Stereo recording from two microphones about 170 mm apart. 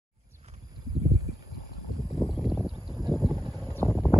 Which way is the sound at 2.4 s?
Centre (ahead or behind).